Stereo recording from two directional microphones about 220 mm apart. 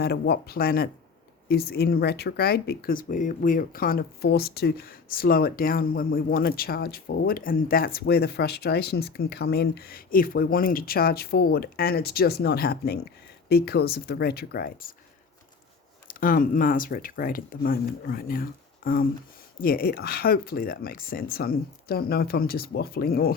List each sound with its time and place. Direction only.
0.0 s speech: 45° left (ahead or behind)
16.0 s speech: 40° left (ahead or behind)